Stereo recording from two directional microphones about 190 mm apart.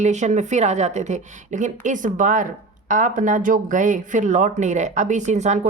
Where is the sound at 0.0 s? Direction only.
40° right (ahead or behind).